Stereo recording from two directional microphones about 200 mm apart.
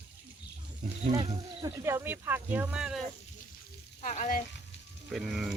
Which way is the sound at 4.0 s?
40° left (ahead or behind).